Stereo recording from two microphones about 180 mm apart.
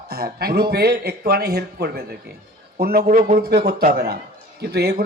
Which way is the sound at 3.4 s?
60° right (ahead or behind).